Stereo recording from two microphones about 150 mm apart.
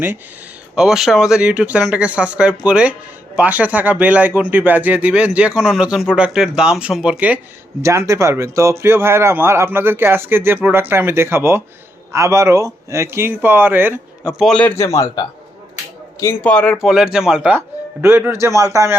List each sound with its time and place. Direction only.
0.8 s speech: 5° right (ahead or behind)
7.8 s speech: 20° right (ahead or behind); by 14.7 s 5° left (ahead or behind)
14.8 s a man's voice: 20° left (ahead or behind)
16.2 s speech: 10° left (ahead or behind); by 17.6 s 5° right (ahead or behind)
18.0 s a man's voice: 15° right (ahead or behind)